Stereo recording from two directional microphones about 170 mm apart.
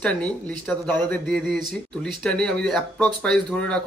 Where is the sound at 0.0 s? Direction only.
5° left (ahead or behind).